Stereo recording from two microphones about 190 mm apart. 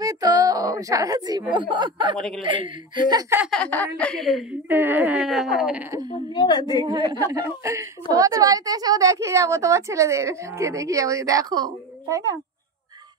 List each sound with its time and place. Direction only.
0.0 s a sound: 20° right (ahead or behind)
1.5 s speech: 25° right (ahead or behind)
3.3 s speech: centre (ahead or behind)
6.3 s a woman's voice: 25° left (ahead or behind)
6.8 s a woman's voice: 20° right (ahead or behind)